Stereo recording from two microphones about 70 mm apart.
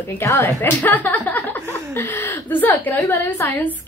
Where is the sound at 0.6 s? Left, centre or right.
Left.